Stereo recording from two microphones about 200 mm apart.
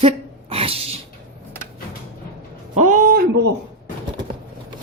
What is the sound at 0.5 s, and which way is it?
Dog, 30° right (ahead or behind).